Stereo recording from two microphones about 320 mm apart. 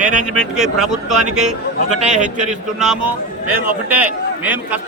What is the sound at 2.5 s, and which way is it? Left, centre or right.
A man's voice, centre.